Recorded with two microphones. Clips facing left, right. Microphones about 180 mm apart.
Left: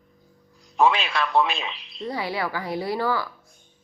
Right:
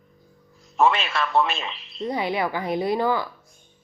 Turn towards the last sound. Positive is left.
turn(degrees=-20)  # may be behind; listen again after turning